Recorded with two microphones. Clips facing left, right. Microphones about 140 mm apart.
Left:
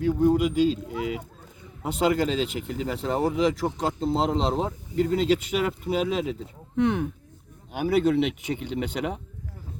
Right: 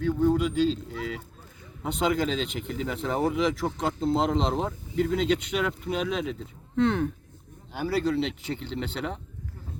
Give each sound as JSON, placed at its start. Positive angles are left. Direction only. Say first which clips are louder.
{"t": 0.0, "sound": "speech", "louder": "left 2 dB", "side_deg": 10}
{"t": 1.8, "sound": "speech", "louder": "left 3 dB", "side_deg": 5}
{"t": 6.7, "sound": "speech", "louder": "even", "side_deg": 15}